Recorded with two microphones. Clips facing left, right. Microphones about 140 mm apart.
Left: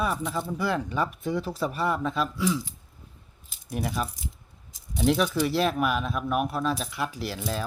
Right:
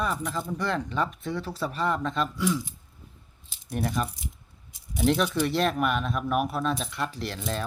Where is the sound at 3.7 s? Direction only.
5° left (ahead or behind).